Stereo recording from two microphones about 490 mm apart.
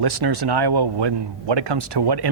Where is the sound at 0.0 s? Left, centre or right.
Right.